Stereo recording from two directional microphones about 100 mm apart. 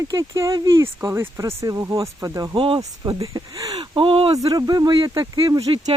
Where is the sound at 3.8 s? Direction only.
60° right (ahead or behind).